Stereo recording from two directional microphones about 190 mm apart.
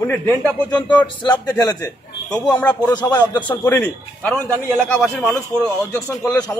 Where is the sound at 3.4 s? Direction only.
10° left (ahead or behind).